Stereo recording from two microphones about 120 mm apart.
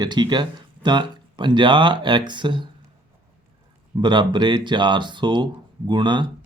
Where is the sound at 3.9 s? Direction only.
40° right (ahead or behind).